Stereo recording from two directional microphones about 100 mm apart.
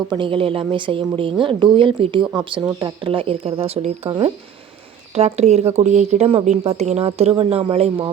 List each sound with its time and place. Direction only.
0.1 s a woman's voice: 55° right (ahead or behind); by 4.1 s 90° right
5.1 s speech: 90° right
7.3 s a woman's voice: 65° right (ahead or behind)